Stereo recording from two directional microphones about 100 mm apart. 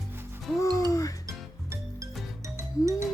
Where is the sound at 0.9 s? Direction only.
35° left (ahead or behind).